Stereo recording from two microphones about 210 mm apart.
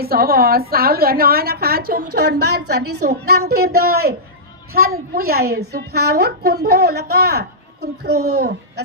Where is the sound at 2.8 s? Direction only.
90° right.